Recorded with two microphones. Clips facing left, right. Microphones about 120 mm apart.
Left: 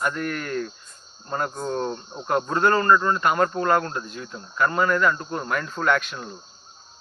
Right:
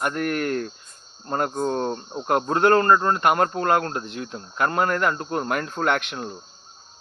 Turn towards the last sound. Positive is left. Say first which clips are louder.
# even
turn(degrees=-60)  # may be behind; listen again after turning